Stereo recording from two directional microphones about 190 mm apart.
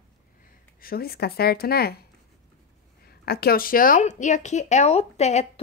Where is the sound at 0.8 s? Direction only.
50° left (ahead or behind).